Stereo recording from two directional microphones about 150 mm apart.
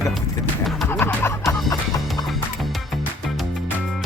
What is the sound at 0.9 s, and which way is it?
Music, 15° left (ahead or behind).